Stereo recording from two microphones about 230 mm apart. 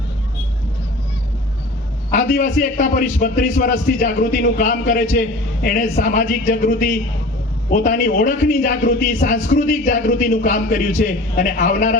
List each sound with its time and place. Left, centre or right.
2.1 s a man's voice: left